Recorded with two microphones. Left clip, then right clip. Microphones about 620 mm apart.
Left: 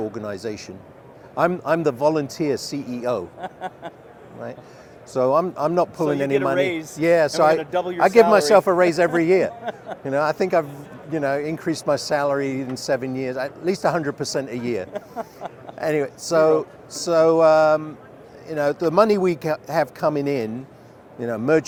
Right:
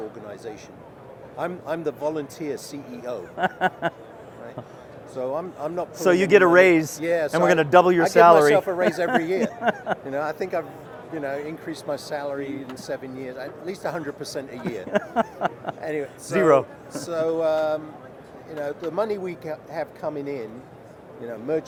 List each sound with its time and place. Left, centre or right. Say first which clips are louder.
0.3 s a man's voice: left 7 dB; left
3.4 s speech: right 9 dB; right
5.1 s speech: left 9 dB; left
6.1 s speech: right 5 dB; right
7.0 s speech: left 5 dB; left
7.5 s speech: right 6 dB; right
8.0 s a man's voice: left 4 dB; left
14.9 s a sound: right 8 dB; right
15.8 s a man's voice: left 9 dB; left
16.9 s speech: left 9 dB; left